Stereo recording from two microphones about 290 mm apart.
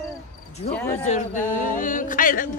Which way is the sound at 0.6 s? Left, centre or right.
Centre.